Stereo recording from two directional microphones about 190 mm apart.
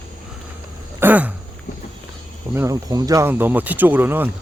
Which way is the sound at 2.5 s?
15° right (ahead or behind).